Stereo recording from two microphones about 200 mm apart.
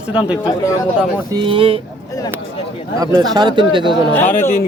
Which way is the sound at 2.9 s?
20° right (ahead or behind).